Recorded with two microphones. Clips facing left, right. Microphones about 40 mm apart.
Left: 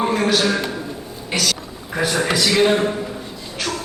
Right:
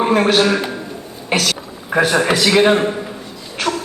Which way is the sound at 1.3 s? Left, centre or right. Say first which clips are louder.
Right 4 dB; right.